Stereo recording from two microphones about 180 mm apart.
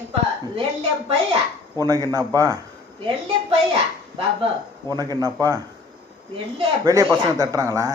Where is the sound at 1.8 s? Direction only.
20° right (ahead or behind).